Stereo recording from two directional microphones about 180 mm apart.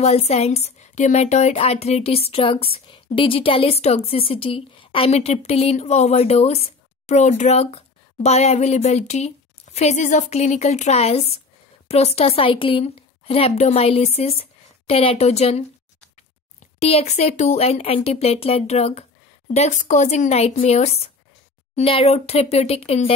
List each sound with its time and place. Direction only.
0.0 s speech: 35° left (ahead or behind)